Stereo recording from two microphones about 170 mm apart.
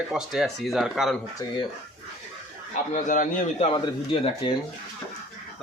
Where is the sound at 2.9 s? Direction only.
50° left (ahead or behind).